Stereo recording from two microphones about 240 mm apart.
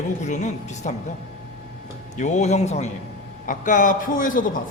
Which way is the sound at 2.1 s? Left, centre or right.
Left.